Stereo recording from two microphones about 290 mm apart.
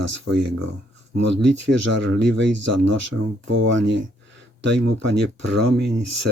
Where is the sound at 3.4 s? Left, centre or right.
Right.